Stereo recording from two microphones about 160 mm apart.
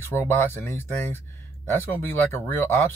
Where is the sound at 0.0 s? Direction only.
15° left (ahead or behind).